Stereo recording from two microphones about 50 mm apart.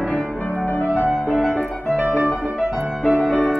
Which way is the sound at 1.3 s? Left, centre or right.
Centre.